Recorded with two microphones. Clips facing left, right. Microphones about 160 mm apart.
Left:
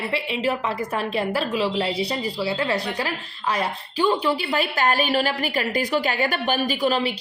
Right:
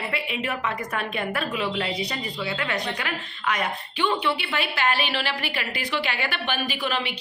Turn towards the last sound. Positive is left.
turn(degrees=40)  # may be behind; listen again after turning